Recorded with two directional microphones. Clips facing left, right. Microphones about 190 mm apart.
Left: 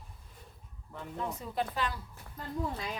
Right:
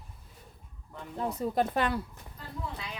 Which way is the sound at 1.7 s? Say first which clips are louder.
Right 6 dB; 60° right (ahead or behind).